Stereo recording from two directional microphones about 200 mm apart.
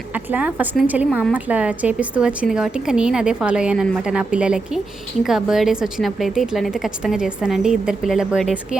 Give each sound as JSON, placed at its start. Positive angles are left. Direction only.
{"t": 0.1, "sound": "a woman's voice", "side_deg": -10}